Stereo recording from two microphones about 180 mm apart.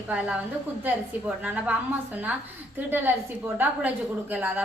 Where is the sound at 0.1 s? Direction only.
5° right (ahead or behind).